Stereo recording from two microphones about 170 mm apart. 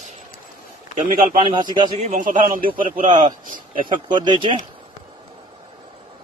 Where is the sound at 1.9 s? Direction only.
45° right (ahead or behind).